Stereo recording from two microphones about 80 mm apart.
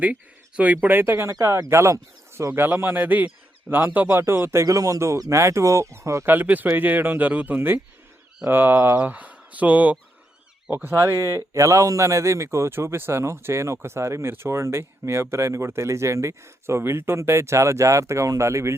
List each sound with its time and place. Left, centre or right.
0.0 s speech: centre; by 2.5 s right
2.5 s speech: right
4.6 s speech: right
6.2 s speech: right